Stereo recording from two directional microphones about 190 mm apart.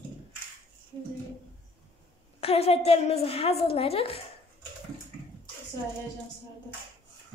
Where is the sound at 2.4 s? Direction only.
30° left (ahead or behind).